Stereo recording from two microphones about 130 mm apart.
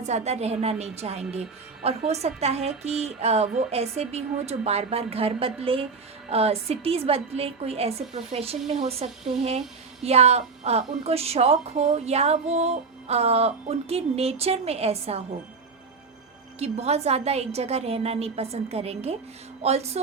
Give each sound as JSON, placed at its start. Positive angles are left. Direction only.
{"t": 0.0, "sound": "a woman's voice", "side_deg": -55}
{"t": 16.6, "sound": "a woman's voice", "side_deg": -55}